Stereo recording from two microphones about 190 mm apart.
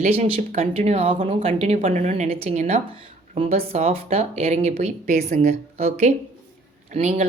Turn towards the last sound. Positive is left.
turn(degrees=-35)  # may be behind; listen again after turning